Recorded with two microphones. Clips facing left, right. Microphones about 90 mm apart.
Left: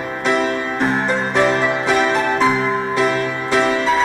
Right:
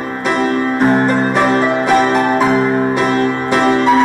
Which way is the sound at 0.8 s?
50° right (ahead or behind).